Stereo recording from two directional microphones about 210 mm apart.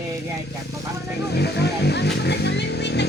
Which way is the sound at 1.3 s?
50° left (ahead or behind).